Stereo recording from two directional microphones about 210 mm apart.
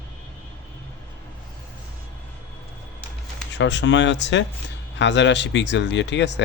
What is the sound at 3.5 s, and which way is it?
Speech, 60° left (ahead or behind).